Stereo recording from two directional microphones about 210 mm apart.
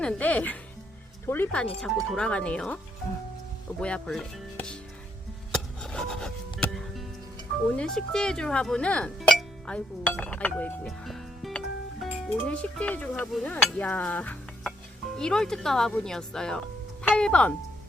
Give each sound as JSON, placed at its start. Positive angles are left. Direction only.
{"t": 0.0, "sound": "speech", "side_deg": 5}
{"t": 3.8, "sound": "speech", "side_deg": 5}
{"t": 5.5, "sound": "music", "side_deg": 5}
{"t": 7.8, "sound": "speech", "side_deg": 5}
{"t": 13.7, "sound": "cutlery", "side_deg": 10}
{"t": 15.2, "sound": "speech", "side_deg": 5}